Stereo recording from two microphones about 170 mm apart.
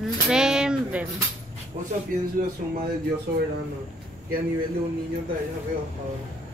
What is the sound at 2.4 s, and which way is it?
Speech, 60° right (ahead or behind).